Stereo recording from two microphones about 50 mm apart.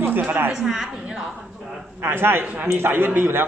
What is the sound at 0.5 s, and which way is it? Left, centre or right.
Speech, centre.